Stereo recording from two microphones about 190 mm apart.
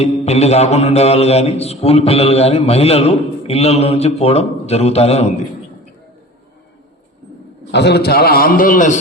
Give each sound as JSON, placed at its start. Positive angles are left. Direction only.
{"t": 0.0, "sound": "a man's voice", "side_deg": 35}
{"t": 7.7, "sound": "a man's voice", "side_deg": 60}